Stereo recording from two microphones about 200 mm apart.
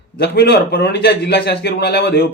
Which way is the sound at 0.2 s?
55° left (ahead or behind).